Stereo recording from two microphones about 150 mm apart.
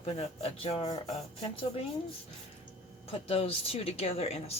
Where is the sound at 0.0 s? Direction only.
40° left (ahead or behind).